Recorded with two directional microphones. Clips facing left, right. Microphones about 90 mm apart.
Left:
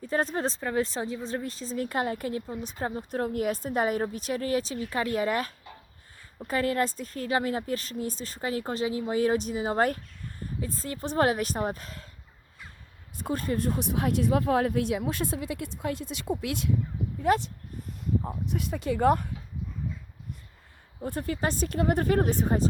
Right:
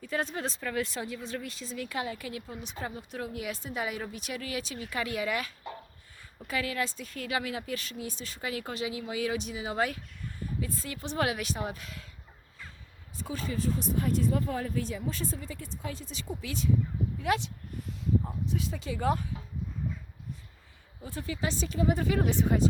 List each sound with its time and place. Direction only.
0.0 s speech: 35° left (ahead or behind)
13.1 s speech: 55° left (ahead or behind)
17.2 s speech: 40° left (ahead or behind)
18.4 s speech: 60° left (ahead or behind)
21.0 s speech: 55° left (ahead or behind)